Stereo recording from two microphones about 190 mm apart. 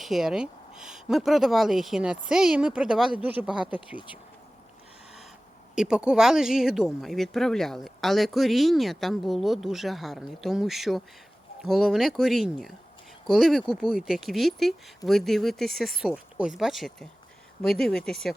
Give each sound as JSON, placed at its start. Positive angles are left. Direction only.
{"t": 0.0, "sound": "speech", "side_deg": 0}
{"t": 3.9, "sound": "speech", "side_deg": 25}
{"t": 5.7, "sound": "speech", "side_deg": -5}